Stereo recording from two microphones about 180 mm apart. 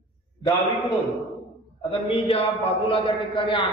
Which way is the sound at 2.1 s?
35° left (ahead or behind).